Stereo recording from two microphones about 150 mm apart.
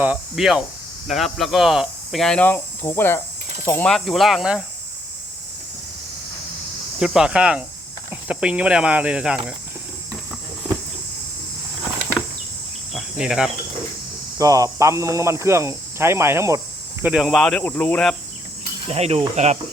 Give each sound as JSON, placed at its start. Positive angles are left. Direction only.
{"t": 0.0, "sound": "speech", "side_deg": -5}
{"t": 3.9, "sound": "speech", "side_deg": 0}
{"t": 7.0, "sound": "speech", "side_deg": -5}
{"t": 12.9, "sound": "cricket", "side_deg": -5}
{"t": 14.3, "sound": "speech", "side_deg": -20}
{"t": 17.0, "sound": "speech", "side_deg": -5}
{"t": 18.9, "sound": "cricket", "side_deg": -45}